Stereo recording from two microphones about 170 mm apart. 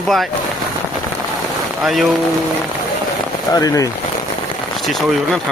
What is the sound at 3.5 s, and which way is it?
Speech, 20° left (ahead or behind).